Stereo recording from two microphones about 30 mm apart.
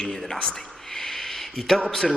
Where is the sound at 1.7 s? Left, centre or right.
Centre.